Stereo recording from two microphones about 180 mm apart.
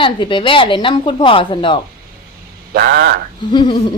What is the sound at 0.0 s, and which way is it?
A woman's voice, 25° left (ahead or behind).